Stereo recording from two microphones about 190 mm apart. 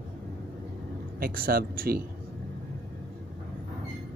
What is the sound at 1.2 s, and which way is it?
Speech, 50° right (ahead or behind).